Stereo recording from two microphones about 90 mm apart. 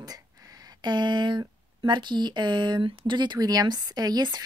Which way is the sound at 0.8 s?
55° right (ahead or behind).